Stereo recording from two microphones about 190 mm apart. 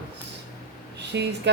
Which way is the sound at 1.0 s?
65° right (ahead or behind).